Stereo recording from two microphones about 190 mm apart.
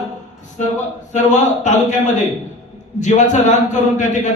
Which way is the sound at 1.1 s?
40° left (ahead or behind).